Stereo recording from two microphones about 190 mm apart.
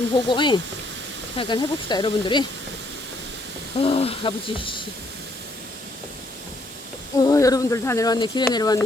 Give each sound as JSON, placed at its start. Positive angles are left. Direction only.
{"t": 0.1, "sound": "speech", "side_deg": 25}
{"t": 3.8, "sound": "speech", "side_deg": 30}
{"t": 7.2, "sound": "speech", "side_deg": 15}